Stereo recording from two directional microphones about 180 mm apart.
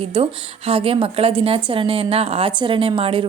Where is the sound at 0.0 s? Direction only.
30° right (ahead or behind).